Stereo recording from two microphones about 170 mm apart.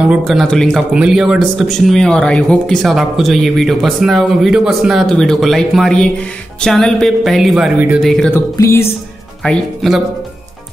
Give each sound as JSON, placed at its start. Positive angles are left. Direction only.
{"t": 0.1, "sound": "a man's voice", "side_deg": 0}
{"t": 8.3, "sound": "music", "side_deg": 15}
{"t": 9.4, "sound": "a man's voice", "side_deg": 0}